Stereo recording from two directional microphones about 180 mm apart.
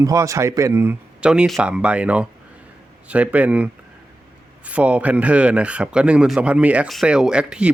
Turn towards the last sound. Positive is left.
turn(degrees=-5)  # may be behind; listen again after turning